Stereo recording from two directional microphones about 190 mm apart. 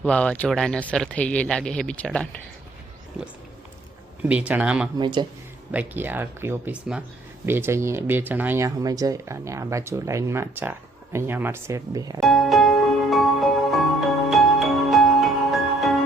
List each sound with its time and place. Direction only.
0.0 s speech: 5° left (ahead or behind)
4.2 s speech: 5° right (ahead or behind)
4.9 s speech: 25° right (ahead or behind)
5.7 s speech: 10° right (ahead or behind)
12.2 s music: centre (ahead or behind)